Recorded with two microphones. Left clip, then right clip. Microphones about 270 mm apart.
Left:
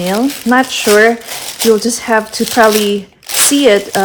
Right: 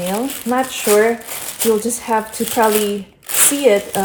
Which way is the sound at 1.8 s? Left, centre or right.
Left.